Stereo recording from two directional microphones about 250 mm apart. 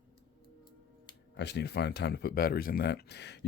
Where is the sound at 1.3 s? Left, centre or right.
Left.